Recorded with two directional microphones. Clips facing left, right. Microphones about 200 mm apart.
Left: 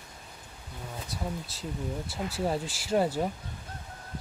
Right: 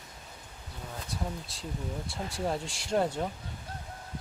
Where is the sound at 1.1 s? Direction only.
Centre (ahead or behind).